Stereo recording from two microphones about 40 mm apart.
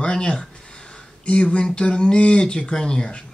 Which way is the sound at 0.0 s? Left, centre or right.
Left.